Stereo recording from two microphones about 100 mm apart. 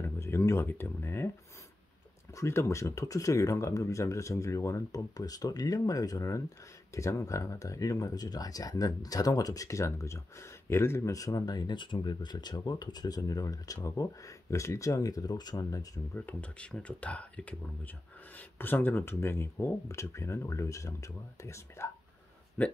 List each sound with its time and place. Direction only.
0.2 s speech: 25° left (ahead or behind)
2.3 s speech: 25° left (ahead or behind)
16.2 s speech: 15° left (ahead or behind)
22.6 s speech: 15° left (ahead or behind)